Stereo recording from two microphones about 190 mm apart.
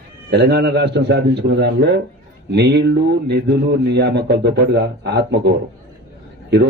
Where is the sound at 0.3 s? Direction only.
60° right (ahead or behind).